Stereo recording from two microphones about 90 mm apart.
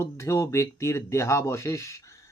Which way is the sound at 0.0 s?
30° left (ahead or behind).